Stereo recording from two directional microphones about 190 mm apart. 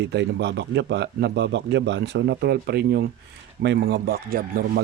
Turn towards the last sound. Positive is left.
turn(degrees=-50)  # may be behind; listen again after turning